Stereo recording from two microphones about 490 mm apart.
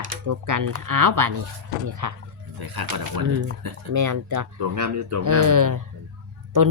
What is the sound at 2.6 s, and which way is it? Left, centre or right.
Speech, right.